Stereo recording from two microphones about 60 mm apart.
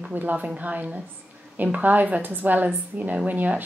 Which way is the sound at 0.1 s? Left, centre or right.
Right.